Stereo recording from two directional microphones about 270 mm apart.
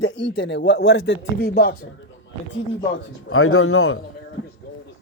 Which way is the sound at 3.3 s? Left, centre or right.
Left.